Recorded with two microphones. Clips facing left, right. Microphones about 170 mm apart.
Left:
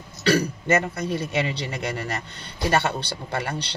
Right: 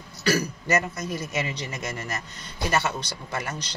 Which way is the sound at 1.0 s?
30° left (ahead or behind).